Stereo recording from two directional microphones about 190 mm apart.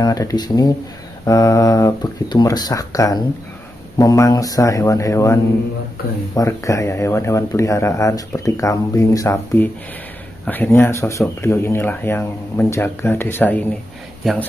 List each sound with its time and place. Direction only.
0.0 s a man's voice: 20° left (ahead or behind); by 14.4 s centre (ahead or behind)